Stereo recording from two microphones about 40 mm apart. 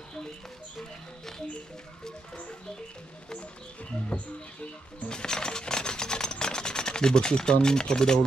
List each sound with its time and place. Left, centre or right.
5.0 s music: centre
6.4 s speech: centre